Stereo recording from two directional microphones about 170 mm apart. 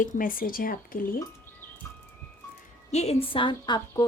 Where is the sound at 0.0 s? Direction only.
55° left (ahead or behind).